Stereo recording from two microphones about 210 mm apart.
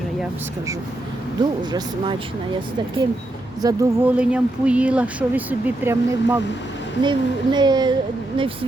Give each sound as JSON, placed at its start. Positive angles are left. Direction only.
{"t": 1.4, "sound": "speech", "side_deg": -20}
{"t": 3.6, "sound": "speech", "side_deg": -15}
{"t": 4.2, "sound": "speech", "side_deg": -5}
{"t": 7.0, "sound": "speech", "side_deg": -20}